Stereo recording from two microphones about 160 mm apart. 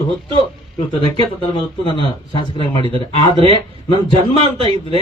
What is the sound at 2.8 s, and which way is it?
A man's voice, 35° right (ahead or behind).